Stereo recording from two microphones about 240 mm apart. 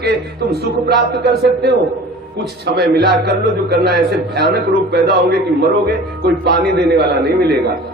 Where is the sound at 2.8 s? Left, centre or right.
Right.